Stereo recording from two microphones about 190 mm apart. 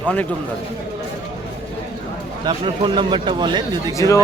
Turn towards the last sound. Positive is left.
turn(degrees=15)  # may be behind; listen again after turning